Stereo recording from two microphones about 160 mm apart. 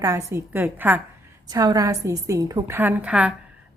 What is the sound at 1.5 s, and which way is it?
A woman's voice, 25° right (ahead or behind).